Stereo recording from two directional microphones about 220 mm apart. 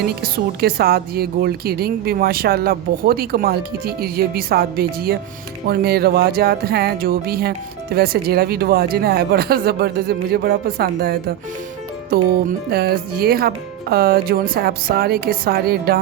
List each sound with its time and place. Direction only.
0.0 s speech: 45° right (ahead or behind)